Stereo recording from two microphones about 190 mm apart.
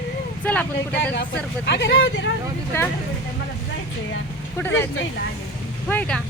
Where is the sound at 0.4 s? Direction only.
5° left (ahead or behind).